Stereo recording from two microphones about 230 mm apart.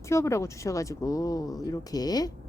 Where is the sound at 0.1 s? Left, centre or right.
Centre.